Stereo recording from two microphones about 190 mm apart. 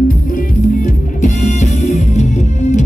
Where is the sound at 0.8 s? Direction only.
40° left (ahead or behind).